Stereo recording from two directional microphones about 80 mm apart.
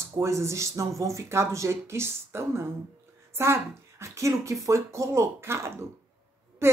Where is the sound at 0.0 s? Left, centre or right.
Right.